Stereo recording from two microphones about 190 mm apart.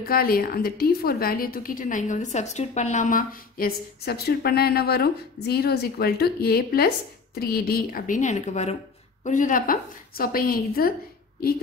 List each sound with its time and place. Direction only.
0.0 s a woman's voice: 50° left (ahead or behind)